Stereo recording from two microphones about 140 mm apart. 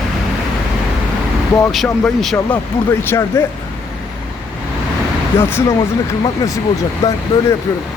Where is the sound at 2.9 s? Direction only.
15° left (ahead or behind).